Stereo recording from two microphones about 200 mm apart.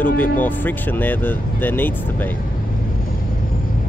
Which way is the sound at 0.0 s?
10° left (ahead or behind).